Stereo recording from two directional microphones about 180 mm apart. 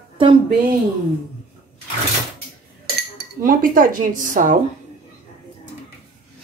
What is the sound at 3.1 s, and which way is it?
Speech, 50° right (ahead or behind).